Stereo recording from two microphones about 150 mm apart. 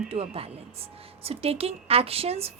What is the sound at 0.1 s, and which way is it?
A woman's voice, 40° right (ahead or behind).